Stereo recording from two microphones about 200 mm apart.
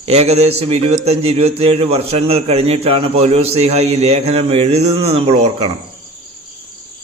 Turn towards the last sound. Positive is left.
turn(degrees=-30)  # may be behind; listen again after turning